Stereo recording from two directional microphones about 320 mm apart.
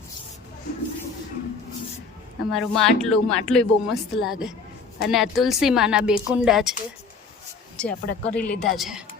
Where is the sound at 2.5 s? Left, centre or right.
Centre.